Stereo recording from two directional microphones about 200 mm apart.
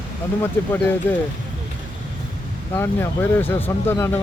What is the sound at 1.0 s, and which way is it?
Speech, 10° left (ahead or behind).